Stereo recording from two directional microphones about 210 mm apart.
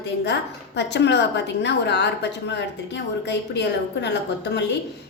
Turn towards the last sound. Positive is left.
turn(degrees=55)  # may be behind; listen again after turning